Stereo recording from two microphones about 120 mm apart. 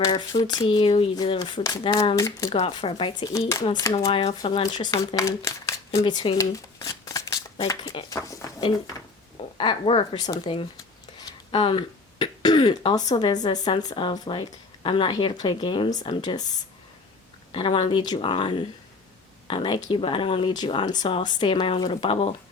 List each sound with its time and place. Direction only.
0.0 s speech: 30° left (ahead or behind)
2.1 s speech: 25° left (ahead or behind)
2.6 s speech: 45° left (ahead or behind)
3.3 s speech: 25° left (ahead or behind)
4.1 s speech: 55° left (ahead or behind); by 4.9 s 40° left (ahead or behind)
5.1 s speech: 25° left (ahead or behind)
6.0 s a sound: 35° left (ahead or behind)
7.7 s speech: 25° left (ahead or behind)
9.6 s speech: 45° left (ahead or behind)
17.5 s speech: 45° left (ahead or behind)